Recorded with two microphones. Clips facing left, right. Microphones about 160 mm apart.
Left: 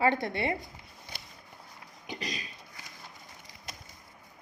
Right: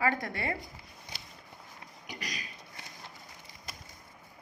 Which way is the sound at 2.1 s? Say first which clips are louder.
Left 4 dB; 25° left (ahead or behind).